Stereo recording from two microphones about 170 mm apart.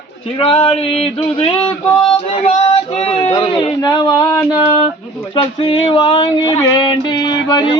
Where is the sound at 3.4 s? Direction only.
25° left (ahead or behind).